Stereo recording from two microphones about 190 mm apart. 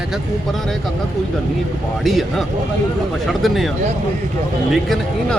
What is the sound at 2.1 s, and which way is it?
Speech, centre (ahead or behind).